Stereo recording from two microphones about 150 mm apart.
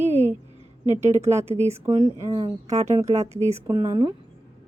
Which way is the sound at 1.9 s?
25° right (ahead or behind).